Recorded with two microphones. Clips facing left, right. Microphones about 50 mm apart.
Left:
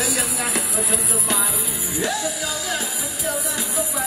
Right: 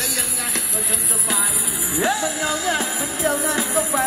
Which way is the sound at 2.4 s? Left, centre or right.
Right.